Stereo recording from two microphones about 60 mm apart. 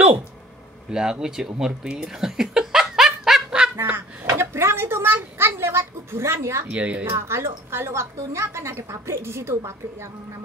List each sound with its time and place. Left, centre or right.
0.9 s speech: centre
1.9 s snicker: centre
4.3 s speech: right
6.7 s speech: centre
7.2 s a woman's voice: right